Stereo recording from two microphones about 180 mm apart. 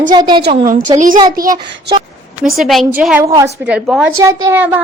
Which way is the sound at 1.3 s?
50° right (ahead or behind).